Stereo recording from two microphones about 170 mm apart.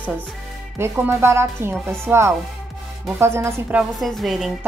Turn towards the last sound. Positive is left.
turn(degrees=0)  # may be behind; listen again after turning